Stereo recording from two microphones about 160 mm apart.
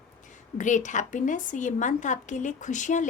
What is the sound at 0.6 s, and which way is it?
Speech, 50° left (ahead or behind).